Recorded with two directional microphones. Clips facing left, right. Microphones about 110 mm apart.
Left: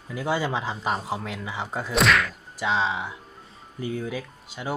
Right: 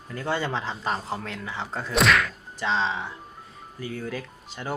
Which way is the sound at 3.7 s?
20° left (ahead or behind).